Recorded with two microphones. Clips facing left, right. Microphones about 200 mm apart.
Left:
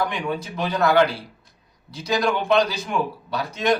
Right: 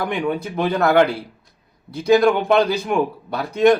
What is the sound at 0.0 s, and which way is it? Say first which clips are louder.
A man's voice: right 3 dB; 55° right (ahead or behind).